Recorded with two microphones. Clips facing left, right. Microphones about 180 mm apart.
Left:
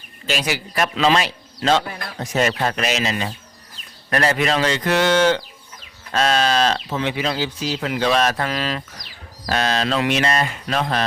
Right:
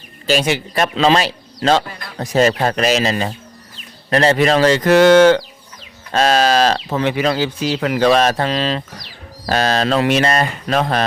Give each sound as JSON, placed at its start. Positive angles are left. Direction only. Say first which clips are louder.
{"t": 0.3, "sound": "speech", "louder": "right 7 dB", "side_deg": -30}
{"t": 4.1, "sound": "a sound", "louder": "right 6 dB", "side_deg": -30}
{"t": 4.4, "sound": "speech", "louder": "right 7 dB", "side_deg": -40}
{"t": 6.1, "sound": "speech", "louder": "right 4 dB", "side_deg": -40}
{"t": 6.9, "sound": "speech", "louder": "right 5 dB", "side_deg": -55}
{"t": 8.2, "sound": "a sound", "louder": "right 4 dB", "side_deg": -30}
{"t": 9.5, "sound": "speech", "louder": "right 4 dB", "side_deg": -40}